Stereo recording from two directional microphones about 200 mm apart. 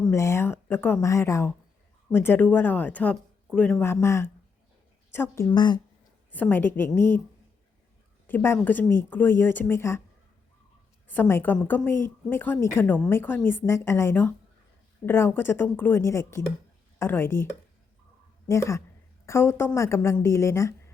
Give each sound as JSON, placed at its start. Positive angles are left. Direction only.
{"t": 0.0, "sound": "a woman's voice", "side_deg": 15}
{"t": 6.3, "sound": "a woman's voice", "side_deg": 10}
{"t": 8.3, "sound": "a woman's voice", "side_deg": 10}
{"t": 11.1, "sound": "a woman's voice", "side_deg": 10}